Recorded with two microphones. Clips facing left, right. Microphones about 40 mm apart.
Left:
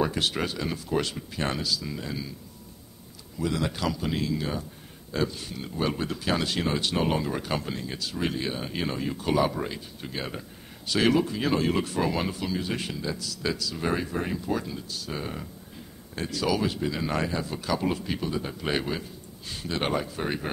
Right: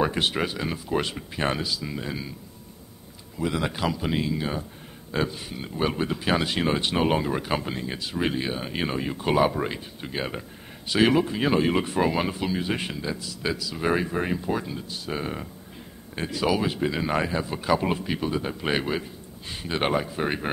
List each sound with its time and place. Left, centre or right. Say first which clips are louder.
0.0 s speech: right 2 dB; right
3.3 s speech: right 2 dB; right